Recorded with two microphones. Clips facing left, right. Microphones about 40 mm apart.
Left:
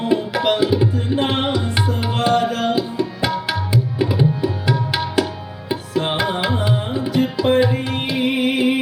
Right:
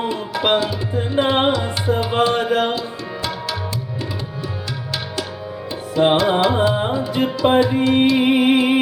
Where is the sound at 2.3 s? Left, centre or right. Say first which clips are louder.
Even; right.